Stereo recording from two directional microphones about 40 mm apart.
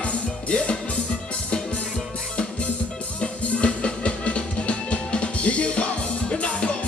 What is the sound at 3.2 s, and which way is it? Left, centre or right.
Music, left.